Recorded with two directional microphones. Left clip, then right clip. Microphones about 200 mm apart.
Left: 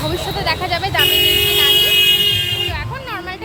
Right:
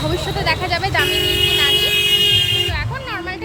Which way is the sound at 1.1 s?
20° left (ahead or behind).